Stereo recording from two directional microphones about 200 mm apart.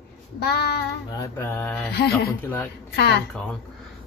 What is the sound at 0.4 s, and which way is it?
Speech, 55° left (ahead or behind).